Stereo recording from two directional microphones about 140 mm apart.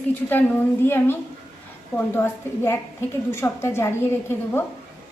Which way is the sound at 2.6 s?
20° left (ahead or behind).